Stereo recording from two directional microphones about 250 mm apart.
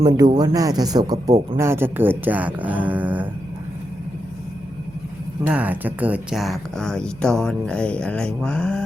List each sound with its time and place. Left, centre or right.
0.0 s speech: right; by 3.2 s centre
5.4 s speech: centre